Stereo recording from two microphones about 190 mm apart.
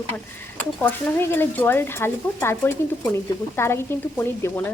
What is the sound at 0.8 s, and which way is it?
A woman's voice, 10° left (ahead or behind).